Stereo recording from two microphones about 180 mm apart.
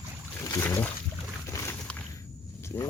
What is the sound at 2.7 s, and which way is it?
Speech, 15° left (ahead or behind).